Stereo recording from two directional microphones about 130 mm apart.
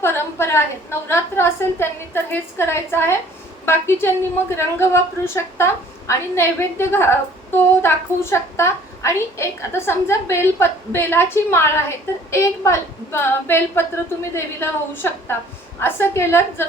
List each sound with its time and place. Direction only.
0.0 s a woman's voice: 20° left (ahead or behind)